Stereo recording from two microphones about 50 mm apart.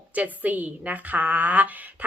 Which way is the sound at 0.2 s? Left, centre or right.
Right.